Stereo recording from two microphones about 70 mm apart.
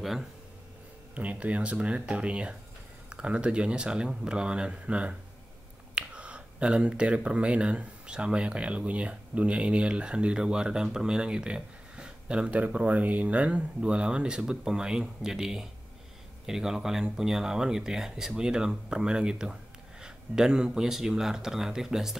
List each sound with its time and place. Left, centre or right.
0.0 s speech: centre
1.1 s speech: centre